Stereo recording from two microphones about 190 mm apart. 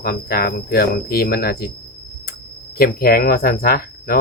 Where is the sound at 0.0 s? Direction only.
55° left (ahead or behind).